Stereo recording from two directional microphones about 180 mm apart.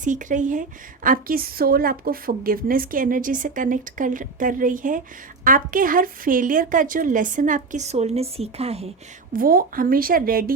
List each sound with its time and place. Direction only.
0.0 s a woman's voice: 45° right (ahead or behind)
9.3 s a woman's voice: 50° right (ahead or behind)